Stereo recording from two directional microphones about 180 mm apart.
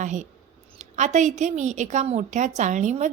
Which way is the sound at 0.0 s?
45° right (ahead or behind).